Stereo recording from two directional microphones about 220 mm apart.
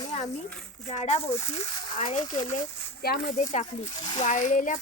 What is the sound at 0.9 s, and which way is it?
Speech, 30° left (ahead or behind).